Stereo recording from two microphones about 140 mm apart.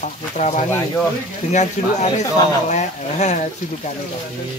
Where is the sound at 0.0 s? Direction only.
60° left (ahead or behind).